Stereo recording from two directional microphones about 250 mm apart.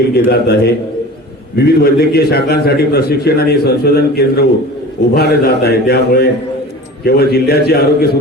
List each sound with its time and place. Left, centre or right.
0.3 s a man's voice: left